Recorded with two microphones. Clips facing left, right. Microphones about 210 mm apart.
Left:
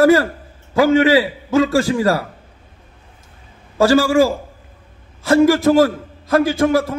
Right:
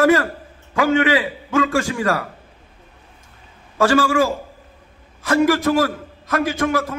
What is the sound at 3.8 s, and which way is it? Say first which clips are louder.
A man's voice: left 4 dB; 25° left (ahead or behind).